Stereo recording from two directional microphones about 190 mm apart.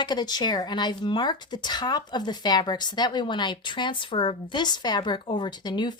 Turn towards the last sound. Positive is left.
turn(degrees=25)  # may be behind; listen again after turning